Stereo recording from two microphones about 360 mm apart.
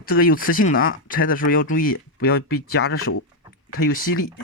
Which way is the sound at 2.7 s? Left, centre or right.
Left.